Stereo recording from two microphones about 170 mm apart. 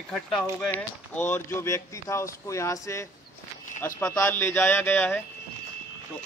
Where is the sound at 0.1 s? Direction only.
5° left (ahead or behind).